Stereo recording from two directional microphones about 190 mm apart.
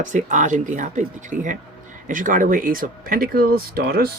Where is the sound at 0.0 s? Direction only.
40° right (ahead or behind).